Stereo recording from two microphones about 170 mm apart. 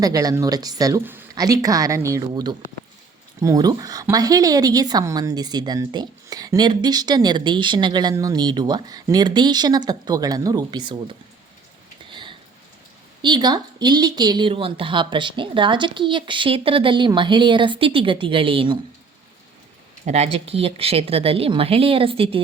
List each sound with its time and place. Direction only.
0.0 s a woman's voice: 20° right (ahead or behind)
12.1 s rain: 30° right (ahead or behind)
13.2 s a woman's voice: 25° right (ahead or behind)
20.1 s speech: 40° right (ahead or behind)